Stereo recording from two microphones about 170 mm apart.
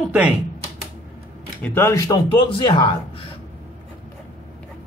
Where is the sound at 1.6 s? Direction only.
15° left (ahead or behind).